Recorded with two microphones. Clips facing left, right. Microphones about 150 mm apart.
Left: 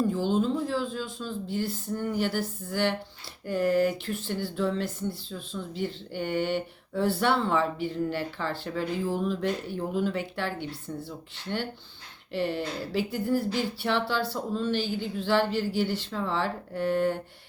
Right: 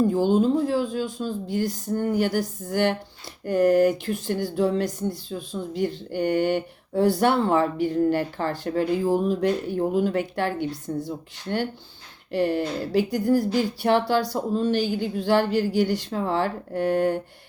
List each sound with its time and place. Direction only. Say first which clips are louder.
0.0 s speech: right 6 dB; 45° right (ahead or behind)
12.3 s speech: right 6 dB; 45° right (ahead or behind)